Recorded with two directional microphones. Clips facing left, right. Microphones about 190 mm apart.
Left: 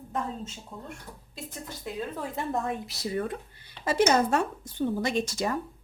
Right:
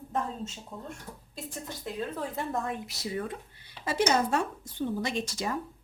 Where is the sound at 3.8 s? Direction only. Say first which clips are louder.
Left 4 dB; 5° right (ahead or behind).